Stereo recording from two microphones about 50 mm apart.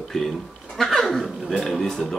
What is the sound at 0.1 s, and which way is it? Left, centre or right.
Speech, centre.